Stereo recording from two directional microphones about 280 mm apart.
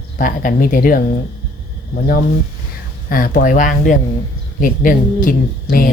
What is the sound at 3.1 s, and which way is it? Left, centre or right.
A woman's voice, left.